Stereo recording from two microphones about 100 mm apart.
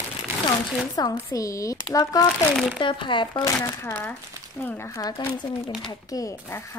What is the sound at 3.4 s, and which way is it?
Speech, 30° left (ahead or behind).